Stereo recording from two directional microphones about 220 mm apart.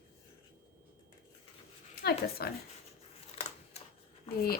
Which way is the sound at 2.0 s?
45° left (ahead or behind).